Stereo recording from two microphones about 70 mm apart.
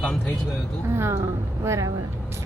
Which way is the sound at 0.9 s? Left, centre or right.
Right.